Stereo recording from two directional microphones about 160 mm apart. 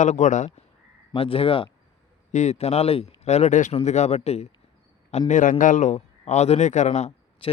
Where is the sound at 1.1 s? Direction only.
35° left (ahead or behind).